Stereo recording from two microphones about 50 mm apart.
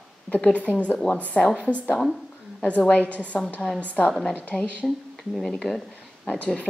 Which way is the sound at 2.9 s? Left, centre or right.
Left.